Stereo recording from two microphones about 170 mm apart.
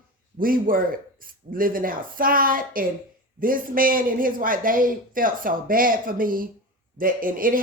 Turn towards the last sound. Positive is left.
turn(degrees=-55)  # may be behind; listen again after turning